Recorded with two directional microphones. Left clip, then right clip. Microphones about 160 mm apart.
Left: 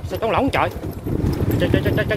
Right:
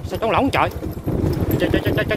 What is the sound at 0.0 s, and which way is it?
Speech, 15° right (ahead or behind).